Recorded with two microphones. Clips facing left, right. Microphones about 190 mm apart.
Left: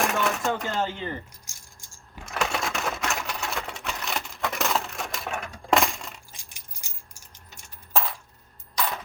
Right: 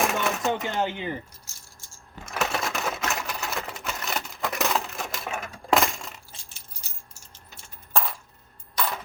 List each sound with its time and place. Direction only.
0.0 s a sound: centre (ahead or behind)
0.7 s speech: 15° right (ahead or behind)
2.2 s sewing machine: centre (ahead or behind)
6.3 s coin: 15° left (ahead or behind)
7.5 s coin: centre (ahead or behind)